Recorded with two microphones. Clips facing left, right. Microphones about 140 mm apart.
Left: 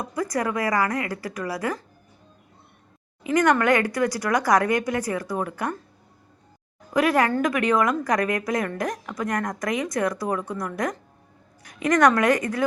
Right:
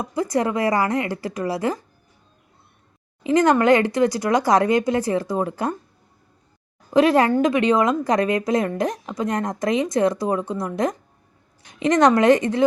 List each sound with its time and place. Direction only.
0.0 s a woman's voice: 25° right (ahead or behind)
3.2 s a woman's voice: 25° right (ahead or behind)
6.9 s a woman's voice: 25° right (ahead or behind)